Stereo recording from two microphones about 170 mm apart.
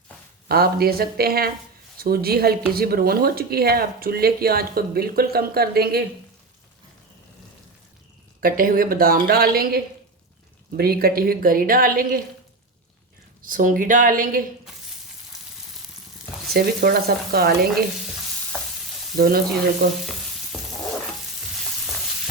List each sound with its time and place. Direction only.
0.4 s speech: 65° right (ahead or behind)
8.4 s speech: 55° right (ahead or behind)
13.4 s speech: 55° right (ahead or behind)
16.5 s speech: 65° right (ahead or behind)
19.1 s speech: 60° right (ahead or behind)